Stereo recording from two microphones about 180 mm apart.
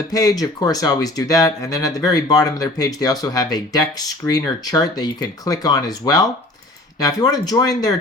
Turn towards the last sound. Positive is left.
turn(degrees=20)  # may be behind; listen again after turning